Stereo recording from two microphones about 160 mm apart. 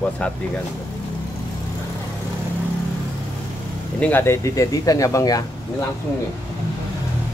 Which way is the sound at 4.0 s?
15° left (ahead or behind).